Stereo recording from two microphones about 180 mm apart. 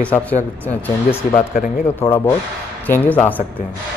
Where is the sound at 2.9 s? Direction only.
10° left (ahead or behind).